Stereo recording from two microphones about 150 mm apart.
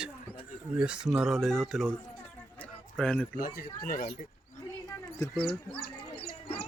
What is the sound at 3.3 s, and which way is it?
Speech, 75° left (ahead or behind).